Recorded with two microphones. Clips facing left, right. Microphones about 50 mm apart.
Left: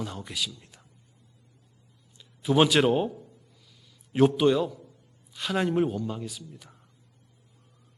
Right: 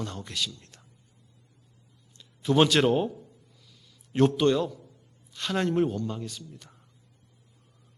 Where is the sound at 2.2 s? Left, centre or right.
Centre.